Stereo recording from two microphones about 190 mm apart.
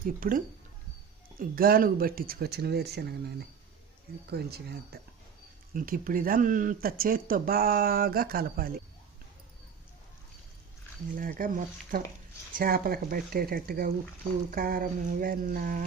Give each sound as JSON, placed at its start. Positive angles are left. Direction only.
{"t": 0.0, "sound": "speech", "side_deg": -45}
{"t": 11.1, "sound": "speech", "side_deg": -45}